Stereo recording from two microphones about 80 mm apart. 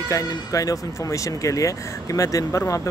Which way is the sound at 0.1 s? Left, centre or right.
Left.